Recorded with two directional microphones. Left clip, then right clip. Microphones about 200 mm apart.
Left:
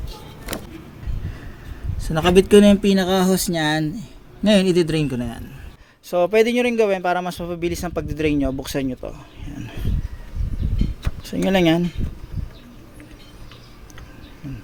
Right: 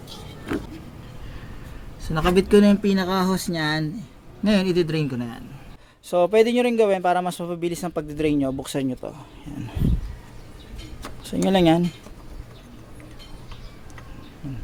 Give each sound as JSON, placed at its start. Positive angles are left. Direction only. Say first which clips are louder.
{"t": 2.0, "sound": "speech", "louder": "left 5 dB", "side_deg": 30}
{"t": 6.1, "sound": "a man's voice", "louder": "left 1 dB", "side_deg": 0}
{"t": 11.2, "sound": "a man's voice", "louder": "left 1 dB", "side_deg": 0}